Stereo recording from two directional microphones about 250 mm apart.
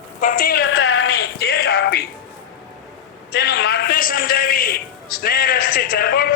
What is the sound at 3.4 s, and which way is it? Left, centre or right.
A man's voice, left.